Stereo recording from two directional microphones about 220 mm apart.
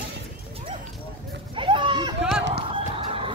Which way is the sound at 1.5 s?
20° right (ahead or behind).